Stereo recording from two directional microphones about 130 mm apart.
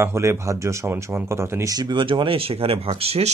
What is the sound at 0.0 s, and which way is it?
Speech, 20° right (ahead or behind).